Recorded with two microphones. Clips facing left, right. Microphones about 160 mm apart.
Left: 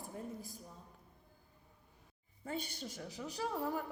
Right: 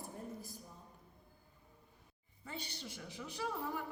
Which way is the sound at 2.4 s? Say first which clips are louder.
Left 5 dB; 50° left (ahead or behind).